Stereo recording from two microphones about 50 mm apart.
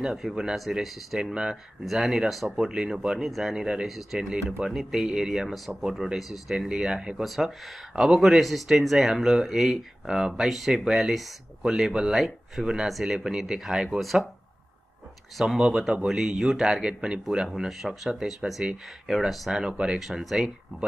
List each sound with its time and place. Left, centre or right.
0.0 s speech: centre
1.3 s speech: centre
1.9 s speech: centre
4.2 s speech: centre
4.6 s speech: centre
11.9 s speech: centre
15.3 s speech: centre